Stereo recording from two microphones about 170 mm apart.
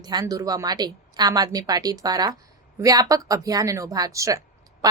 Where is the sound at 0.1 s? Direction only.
20° right (ahead or behind).